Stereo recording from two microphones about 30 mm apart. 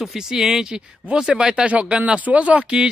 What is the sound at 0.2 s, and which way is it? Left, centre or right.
Speech, centre.